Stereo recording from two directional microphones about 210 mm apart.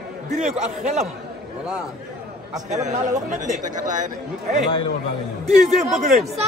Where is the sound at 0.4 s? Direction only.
35° right (ahead or behind).